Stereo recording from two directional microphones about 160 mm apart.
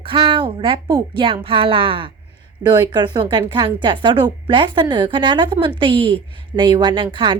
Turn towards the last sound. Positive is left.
turn(degrees=-30)  # may be behind; listen again after turning